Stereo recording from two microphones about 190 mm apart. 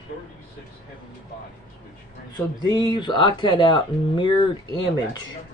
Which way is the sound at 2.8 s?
20° left (ahead or behind).